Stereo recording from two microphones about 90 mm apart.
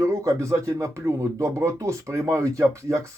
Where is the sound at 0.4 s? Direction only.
35° right (ahead or behind).